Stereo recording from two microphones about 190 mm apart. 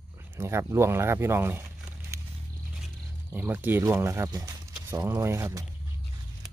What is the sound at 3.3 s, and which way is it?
Speech, 10° right (ahead or behind).